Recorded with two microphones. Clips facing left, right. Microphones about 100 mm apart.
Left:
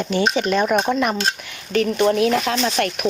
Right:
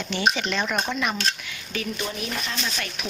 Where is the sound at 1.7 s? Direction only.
60° left (ahead or behind); by 2.6 s 90° left.